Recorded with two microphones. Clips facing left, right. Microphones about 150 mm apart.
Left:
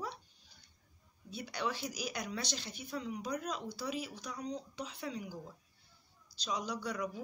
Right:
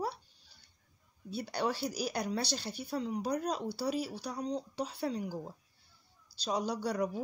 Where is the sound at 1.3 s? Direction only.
35° right (ahead or behind).